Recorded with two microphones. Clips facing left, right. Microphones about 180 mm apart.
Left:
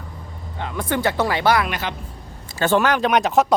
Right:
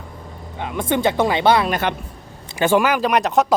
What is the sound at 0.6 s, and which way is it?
Speech, 20° right (ahead or behind).